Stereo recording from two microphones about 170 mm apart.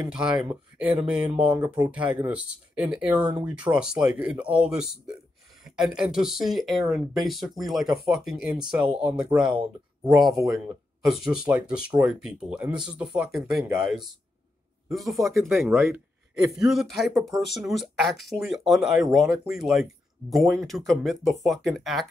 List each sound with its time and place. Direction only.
0.1 s speech: 5° right (ahead or behind)
15.5 s speech: 15° right (ahead or behind)
16.5 s speech: centre (ahead or behind)